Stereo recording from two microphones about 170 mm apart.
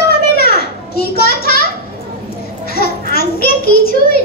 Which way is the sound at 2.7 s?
65° left (ahead or behind).